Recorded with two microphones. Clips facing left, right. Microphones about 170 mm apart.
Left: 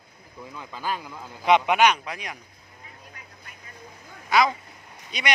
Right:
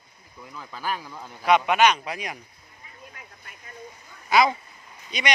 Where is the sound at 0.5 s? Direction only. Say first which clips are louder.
Even; 15° left (ahead or behind).